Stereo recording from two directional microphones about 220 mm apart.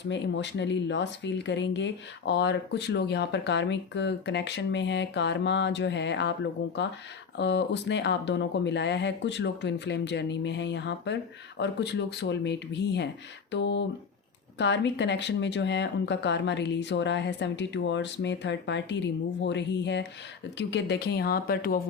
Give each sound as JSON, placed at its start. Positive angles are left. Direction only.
{"t": 0.1, "sound": "speech", "side_deg": 55}